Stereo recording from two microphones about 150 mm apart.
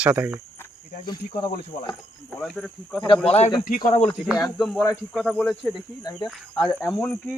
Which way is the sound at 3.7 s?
70° left (ahead or behind).